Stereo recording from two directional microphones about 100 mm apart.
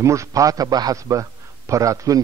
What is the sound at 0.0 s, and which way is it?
A man's voice, 30° right (ahead or behind).